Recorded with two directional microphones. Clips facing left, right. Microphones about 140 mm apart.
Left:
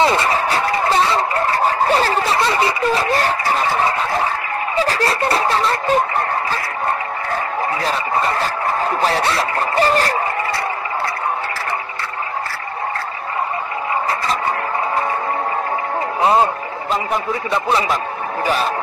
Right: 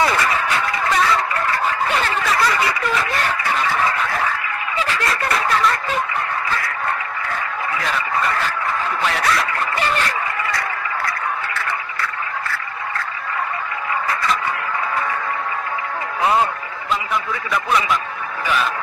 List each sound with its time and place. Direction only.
0.0 s fowl: 25° left (ahead or behind)
5.9 s speech: 35° left (ahead or behind)
7.8 s speech: 30° left (ahead or behind)
11.5 s a sound: 35° left (ahead or behind)
16.2 s a man's voice: 30° left (ahead or behind)